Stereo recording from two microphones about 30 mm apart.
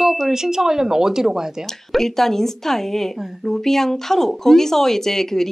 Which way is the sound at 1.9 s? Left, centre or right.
Centre.